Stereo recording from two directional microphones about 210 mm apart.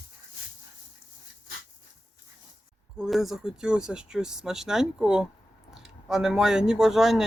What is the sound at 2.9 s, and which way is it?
Speech, centre (ahead or behind).